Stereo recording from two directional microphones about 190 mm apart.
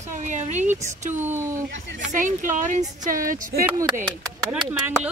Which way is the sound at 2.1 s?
45° right (ahead or behind).